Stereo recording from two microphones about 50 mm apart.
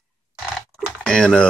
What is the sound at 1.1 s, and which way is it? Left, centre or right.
Speech, centre.